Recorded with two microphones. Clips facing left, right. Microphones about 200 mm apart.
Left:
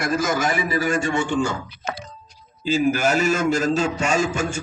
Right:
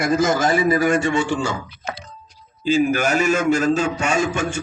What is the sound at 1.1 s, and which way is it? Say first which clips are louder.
Speech: right 1 dB; 80° right.